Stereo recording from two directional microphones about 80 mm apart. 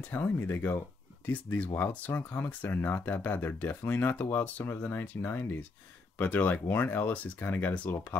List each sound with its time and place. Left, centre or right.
0.0 s speech: left